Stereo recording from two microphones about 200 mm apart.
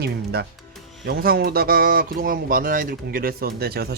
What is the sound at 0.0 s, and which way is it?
Speech, 55° right (ahead or behind).